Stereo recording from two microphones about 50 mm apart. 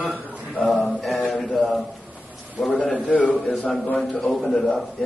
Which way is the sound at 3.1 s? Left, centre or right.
Left.